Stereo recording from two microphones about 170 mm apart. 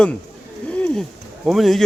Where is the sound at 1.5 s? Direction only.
Centre (ahead or behind).